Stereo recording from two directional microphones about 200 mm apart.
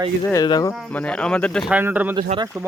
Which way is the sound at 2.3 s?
30° right (ahead or behind).